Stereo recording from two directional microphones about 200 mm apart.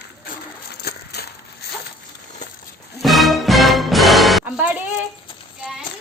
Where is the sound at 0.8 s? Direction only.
55° left (ahead or behind).